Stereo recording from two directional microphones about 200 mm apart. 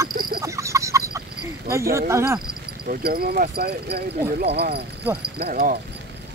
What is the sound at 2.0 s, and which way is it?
Speech, 15° right (ahead or behind).